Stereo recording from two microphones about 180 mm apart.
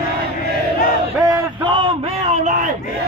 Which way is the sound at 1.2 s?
25° right (ahead or behind).